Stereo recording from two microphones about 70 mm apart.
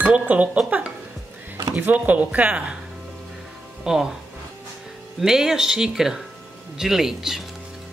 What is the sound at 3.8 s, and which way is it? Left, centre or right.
Speech, centre.